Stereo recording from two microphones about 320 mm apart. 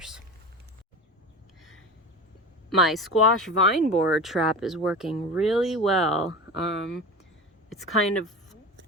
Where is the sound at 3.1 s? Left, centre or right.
Left.